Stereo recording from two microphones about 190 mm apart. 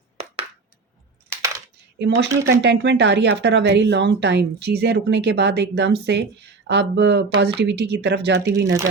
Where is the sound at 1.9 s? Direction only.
65° right (ahead or behind).